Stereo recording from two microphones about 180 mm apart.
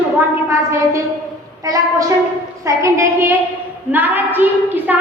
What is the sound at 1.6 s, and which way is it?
A woman's voice, 20° right (ahead or behind).